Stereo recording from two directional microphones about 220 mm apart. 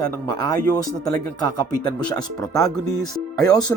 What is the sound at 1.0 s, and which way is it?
Speech, 15° left (ahead or behind).